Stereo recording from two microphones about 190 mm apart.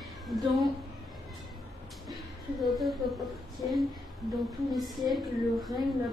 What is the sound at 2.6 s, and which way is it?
Speech, centre (ahead or behind).